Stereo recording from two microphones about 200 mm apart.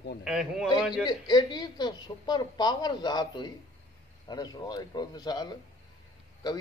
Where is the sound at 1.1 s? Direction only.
20° left (ahead or behind).